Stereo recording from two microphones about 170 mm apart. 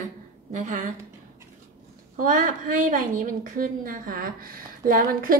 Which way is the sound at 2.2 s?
55° right (ahead or behind).